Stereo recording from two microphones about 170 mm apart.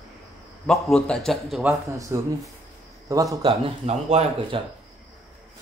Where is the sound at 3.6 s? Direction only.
40° right (ahead or behind).